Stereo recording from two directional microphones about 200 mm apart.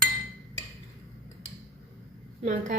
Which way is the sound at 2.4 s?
35° right (ahead or behind).